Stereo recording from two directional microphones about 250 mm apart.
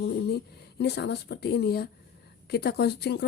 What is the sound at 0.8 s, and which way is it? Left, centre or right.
Speech, left.